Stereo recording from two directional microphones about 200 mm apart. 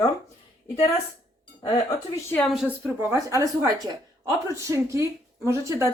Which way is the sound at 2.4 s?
Centre (ahead or behind).